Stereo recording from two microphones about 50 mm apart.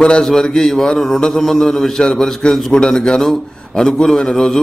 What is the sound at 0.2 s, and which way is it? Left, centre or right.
A man's voice, centre.